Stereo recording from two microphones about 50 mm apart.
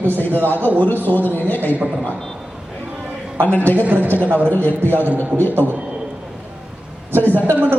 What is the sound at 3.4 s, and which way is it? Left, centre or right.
Speech, left.